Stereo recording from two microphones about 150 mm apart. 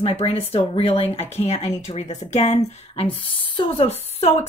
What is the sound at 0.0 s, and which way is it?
A woman's voice, 40° left (ahead or behind).